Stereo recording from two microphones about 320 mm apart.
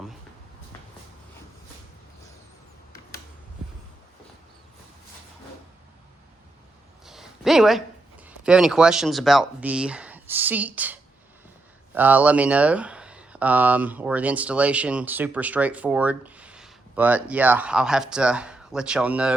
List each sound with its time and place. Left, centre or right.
7.0 s a sound: centre
8.2 s speech: centre
11.9 s speech: centre